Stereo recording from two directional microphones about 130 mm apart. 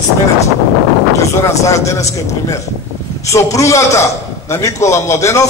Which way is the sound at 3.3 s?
25° left (ahead or behind).